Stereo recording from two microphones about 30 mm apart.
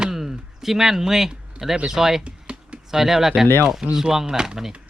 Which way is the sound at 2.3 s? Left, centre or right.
Right.